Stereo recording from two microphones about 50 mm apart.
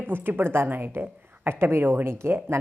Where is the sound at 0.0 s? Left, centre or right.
Right.